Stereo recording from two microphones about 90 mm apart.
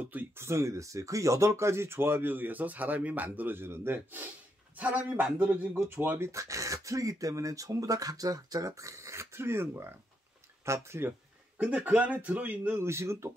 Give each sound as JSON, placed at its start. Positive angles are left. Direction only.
{"t": 0.0, "sound": "speech", "side_deg": -20}
{"t": 10.6, "sound": "a sound", "side_deg": -30}
{"t": 11.6, "sound": "speech", "side_deg": -15}
{"t": 12.8, "sound": "speech", "side_deg": -30}